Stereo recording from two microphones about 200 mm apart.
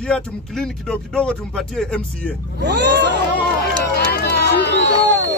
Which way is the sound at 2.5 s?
60° right (ahead or behind).